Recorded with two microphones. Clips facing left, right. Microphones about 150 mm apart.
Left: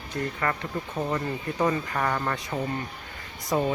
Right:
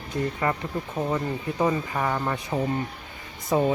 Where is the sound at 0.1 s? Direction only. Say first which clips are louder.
Right 3 dB; 20° right (ahead or behind).